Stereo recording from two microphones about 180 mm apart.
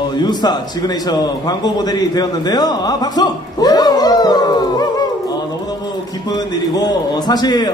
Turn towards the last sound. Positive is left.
turn(degrees=20)  # may be behind; listen again after turning